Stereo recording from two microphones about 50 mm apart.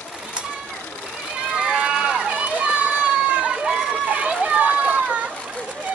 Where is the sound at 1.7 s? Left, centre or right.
Centre.